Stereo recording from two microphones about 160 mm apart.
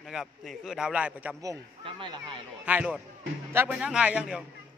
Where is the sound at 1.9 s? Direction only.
30° right (ahead or behind).